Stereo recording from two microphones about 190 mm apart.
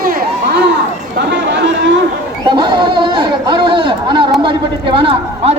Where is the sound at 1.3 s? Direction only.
65° right (ahead or behind).